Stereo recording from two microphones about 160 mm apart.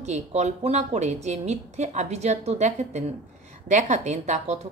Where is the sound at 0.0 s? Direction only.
45° right (ahead or behind).